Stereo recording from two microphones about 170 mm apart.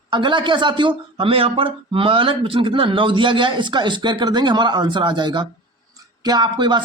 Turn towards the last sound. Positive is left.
turn(degrees=-25)  # may be behind; listen again after turning